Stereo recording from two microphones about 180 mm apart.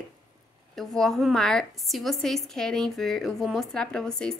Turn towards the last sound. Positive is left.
turn(degrees=5)  # may be behind; listen again after turning